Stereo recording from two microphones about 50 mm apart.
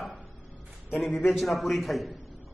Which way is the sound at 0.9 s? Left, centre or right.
Centre.